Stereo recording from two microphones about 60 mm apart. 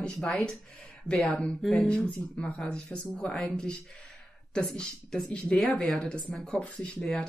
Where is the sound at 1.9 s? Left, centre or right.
Centre.